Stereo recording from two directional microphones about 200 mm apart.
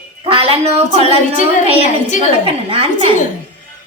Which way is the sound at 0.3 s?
30° right (ahead or behind).